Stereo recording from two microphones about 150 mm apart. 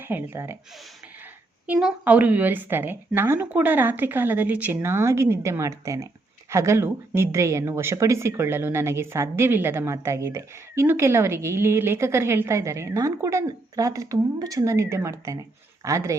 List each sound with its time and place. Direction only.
0.0 s a woman's voice: 15° right (ahead or behind)
1.6 s a woman's voice: 10° right (ahead or behind)